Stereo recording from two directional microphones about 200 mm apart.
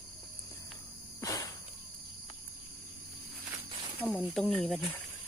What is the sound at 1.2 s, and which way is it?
Insect, 15° left (ahead or behind).